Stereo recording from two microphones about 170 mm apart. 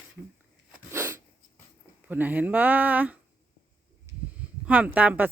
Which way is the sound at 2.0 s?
10° right (ahead or behind).